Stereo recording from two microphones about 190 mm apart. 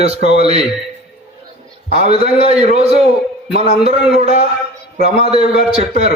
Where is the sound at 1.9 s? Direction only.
35° right (ahead or behind).